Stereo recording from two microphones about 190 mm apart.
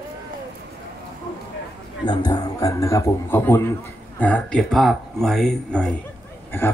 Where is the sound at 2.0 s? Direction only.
20° left (ahead or behind).